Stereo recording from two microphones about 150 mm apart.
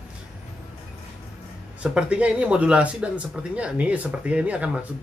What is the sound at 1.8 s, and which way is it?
Speech, 5° right (ahead or behind).